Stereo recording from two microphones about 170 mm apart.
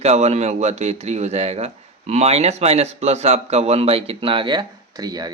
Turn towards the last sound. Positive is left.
turn(degrees=-20)  # may be behind; listen again after turning